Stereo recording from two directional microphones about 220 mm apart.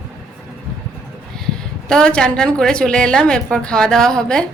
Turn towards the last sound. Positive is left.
turn(degrees=5)  # may be behind; listen again after turning